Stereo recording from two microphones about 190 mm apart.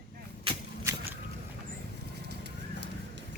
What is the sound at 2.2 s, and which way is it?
Clip-clop, 65° right (ahead or behind).